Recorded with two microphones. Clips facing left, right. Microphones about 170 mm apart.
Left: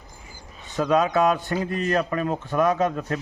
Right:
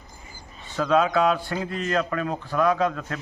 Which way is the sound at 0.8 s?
15° left (ahead or behind).